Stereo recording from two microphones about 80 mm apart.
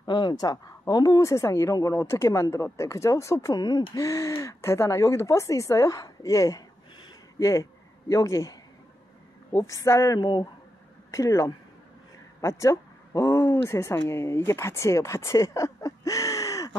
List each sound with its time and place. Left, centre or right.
0.0 s speech: left
3.5 s speech: left
4.0 s speech: left
10.2 s speech: left
11.1 s speech: left